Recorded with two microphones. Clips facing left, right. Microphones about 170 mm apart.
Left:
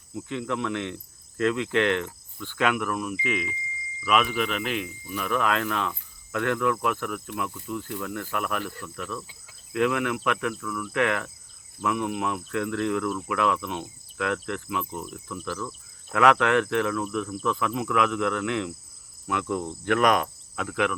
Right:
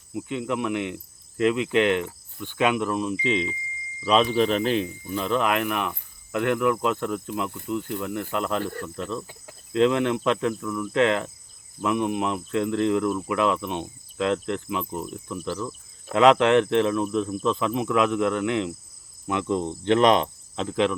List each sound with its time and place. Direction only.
0.1 s speech: 20° right (ahead or behind)